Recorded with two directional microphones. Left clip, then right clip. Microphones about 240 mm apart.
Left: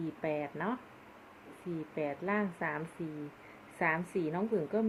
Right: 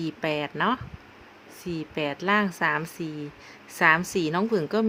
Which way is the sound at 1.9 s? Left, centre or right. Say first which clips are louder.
Right 10 dB; right.